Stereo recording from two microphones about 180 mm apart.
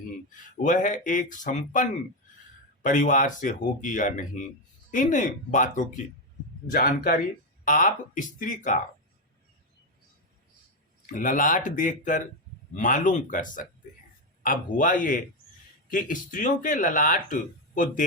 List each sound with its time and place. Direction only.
0.5 s speech: 45° left (ahead or behind)
6.7 s speech: 55° left (ahead or behind)
11.0 s speech: 45° left (ahead or behind)